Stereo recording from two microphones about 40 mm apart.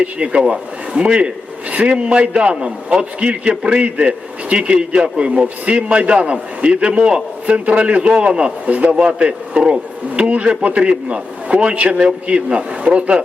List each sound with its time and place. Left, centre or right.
0.0 s a man's voice: right
8.6 s a man's voice: right
8.9 s a man's voice: right